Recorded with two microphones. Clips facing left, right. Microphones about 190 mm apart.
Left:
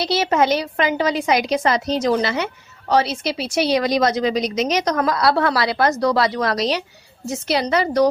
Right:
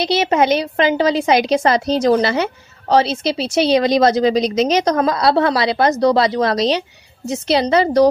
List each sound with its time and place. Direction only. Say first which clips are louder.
0.0 s a woman's voice: right 3 dB; 20° right (ahead or behind)